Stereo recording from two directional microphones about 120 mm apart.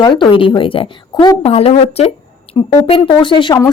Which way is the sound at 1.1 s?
30° left (ahead or behind).